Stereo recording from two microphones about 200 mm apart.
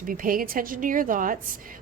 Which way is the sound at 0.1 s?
45° right (ahead or behind).